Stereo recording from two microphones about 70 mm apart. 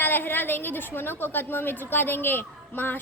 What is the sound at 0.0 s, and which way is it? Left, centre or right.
A woman's voice, left.